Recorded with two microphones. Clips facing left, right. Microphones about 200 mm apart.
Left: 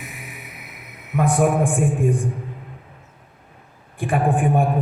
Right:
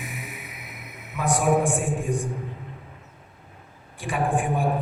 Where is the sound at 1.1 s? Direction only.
55° left (ahead or behind).